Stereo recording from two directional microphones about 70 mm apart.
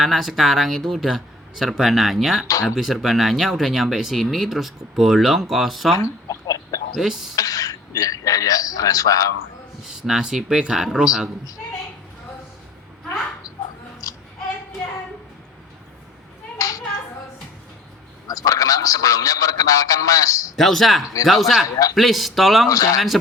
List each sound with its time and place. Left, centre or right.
0.0 s speech: centre
6.0 s a sound: left
6.9 s speech: centre
7.3 s a man's voice: left
9.8 s speech: centre
14.0 s a sound: left
16.6 s hands: left
18.3 s a man's voice: left
20.6 s speech: centre
22.7 s a man's voice: left